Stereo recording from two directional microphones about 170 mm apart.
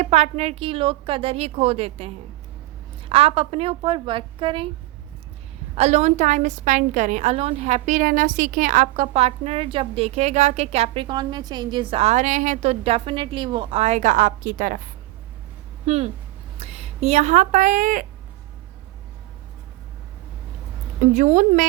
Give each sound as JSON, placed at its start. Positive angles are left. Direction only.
{"t": 0.0, "sound": "a woman's voice", "side_deg": -40}
{"t": 5.7, "sound": "a woman's voice", "side_deg": -40}
{"t": 15.9, "sound": "a woman's voice", "side_deg": -35}
{"t": 21.0, "sound": "a woman's voice", "side_deg": -50}